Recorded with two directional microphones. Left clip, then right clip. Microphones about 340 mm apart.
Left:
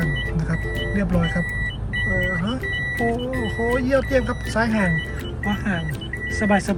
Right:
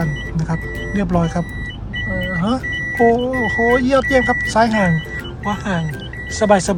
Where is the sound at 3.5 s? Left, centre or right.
Right.